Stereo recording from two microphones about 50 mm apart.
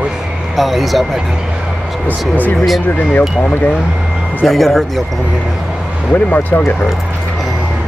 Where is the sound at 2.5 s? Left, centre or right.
Centre.